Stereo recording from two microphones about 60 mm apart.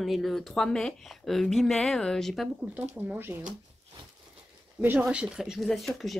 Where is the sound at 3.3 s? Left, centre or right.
Right.